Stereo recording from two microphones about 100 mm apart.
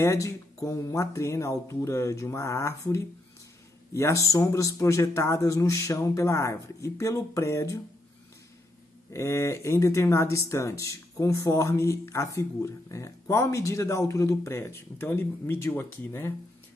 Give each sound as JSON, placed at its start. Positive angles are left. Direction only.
{"t": 0.0, "sound": "speech", "side_deg": 30}
{"t": 9.1, "sound": "speech", "side_deg": 30}